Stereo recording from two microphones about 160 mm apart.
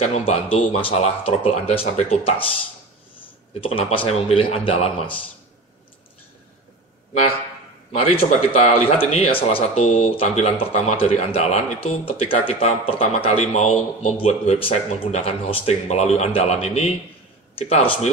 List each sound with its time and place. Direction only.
0.0 s speech: 40° left (ahead or behind)
3.6 s speech: 35° left (ahead or behind)
8.0 s a man's voice: 40° left (ahead or behind)